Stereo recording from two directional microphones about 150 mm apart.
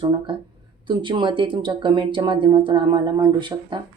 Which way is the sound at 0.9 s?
30° right (ahead or behind).